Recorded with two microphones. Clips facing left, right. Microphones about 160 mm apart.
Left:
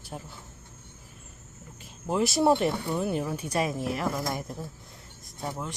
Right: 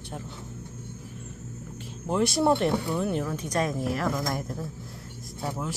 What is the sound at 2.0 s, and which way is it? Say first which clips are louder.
Speech: even; centre (ahead or behind).